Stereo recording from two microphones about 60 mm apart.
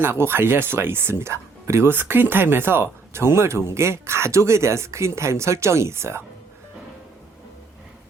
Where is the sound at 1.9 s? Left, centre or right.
Right.